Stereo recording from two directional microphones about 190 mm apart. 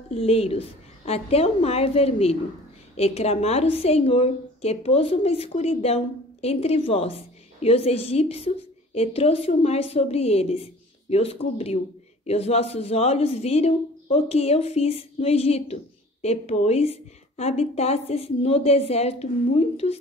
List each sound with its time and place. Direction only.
0.1 s speech: 30° left (ahead or behind)